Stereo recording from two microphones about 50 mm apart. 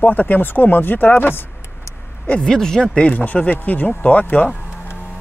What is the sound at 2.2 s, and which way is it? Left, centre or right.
Speech, left.